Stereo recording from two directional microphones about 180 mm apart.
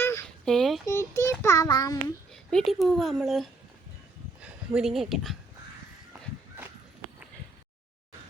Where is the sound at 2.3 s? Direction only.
5° left (ahead or behind).